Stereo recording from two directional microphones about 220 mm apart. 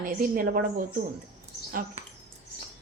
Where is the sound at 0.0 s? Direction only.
40° right (ahead or behind).